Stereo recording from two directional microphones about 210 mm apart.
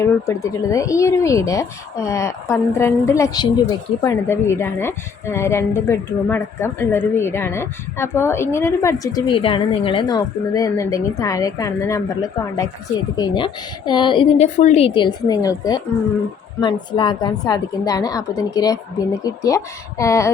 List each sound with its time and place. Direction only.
0.0 s a woman's voice: 15° left (ahead or behind)